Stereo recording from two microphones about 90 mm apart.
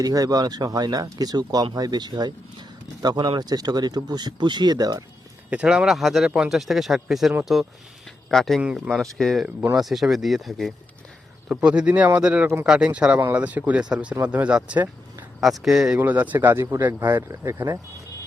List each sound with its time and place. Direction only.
0.0 s speech: 45° right (ahead or behind)
5.5 s speech: 10° right (ahead or behind)
8.6 s speech: 10° right (ahead or behind)
11.4 s speech: 10° right (ahead or behind)
16.0 s speech: 20° right (ahead or behind)
17.1 s speech: 35° right (ahead or behind)